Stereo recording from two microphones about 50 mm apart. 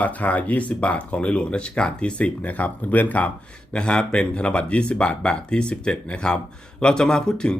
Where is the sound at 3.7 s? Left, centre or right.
Centre.